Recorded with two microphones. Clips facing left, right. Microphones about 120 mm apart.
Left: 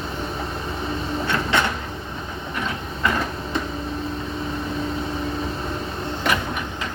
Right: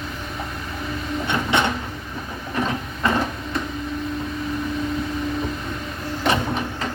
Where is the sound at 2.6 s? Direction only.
30° right (ahead or behind).